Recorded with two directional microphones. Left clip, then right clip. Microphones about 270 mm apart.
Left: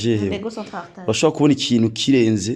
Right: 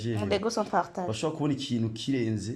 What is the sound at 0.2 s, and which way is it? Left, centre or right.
Speech, centre.